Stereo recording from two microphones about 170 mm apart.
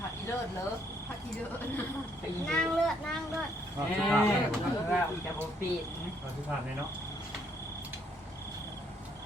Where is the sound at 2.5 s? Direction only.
5° left (ahead or behind).